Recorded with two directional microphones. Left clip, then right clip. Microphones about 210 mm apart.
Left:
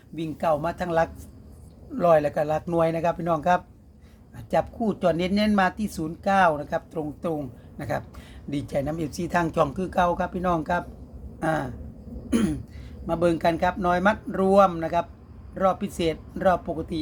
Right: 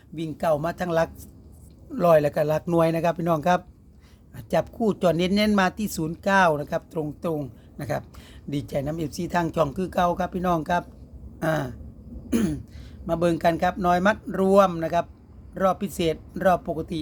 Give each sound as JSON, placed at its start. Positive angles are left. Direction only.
{"t": 0.2, "sound": "speech", "side_deg": -25}
{"t": 11.3, "sound": "a sound", "side_deg": -25}
{"t": 12.3, "sound": "speech", "side_deg": -20}